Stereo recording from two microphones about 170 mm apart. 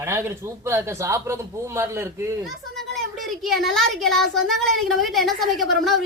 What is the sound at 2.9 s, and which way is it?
A child's voice, centre (ahead or behind).